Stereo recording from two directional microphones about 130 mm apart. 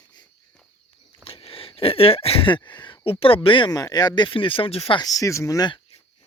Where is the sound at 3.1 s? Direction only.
45° left (ahead or behind).